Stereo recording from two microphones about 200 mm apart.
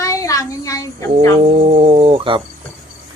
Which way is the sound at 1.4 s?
30° right (ahead or behind).